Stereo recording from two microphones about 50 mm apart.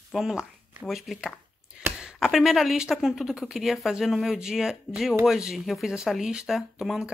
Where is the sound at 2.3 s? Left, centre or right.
Centre.